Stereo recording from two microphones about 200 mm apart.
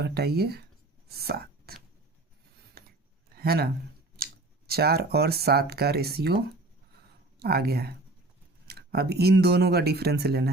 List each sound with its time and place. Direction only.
0.0 s speech: 55° right (ahead or behind)
1.0 s chopping: 50° right (ahead or behind)
2.8 s a sound: 50° right (ahead or behind)
3.3 s speech: 50° right (ahead or behind)